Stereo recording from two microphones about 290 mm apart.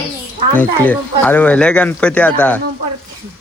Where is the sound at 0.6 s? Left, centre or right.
Centre.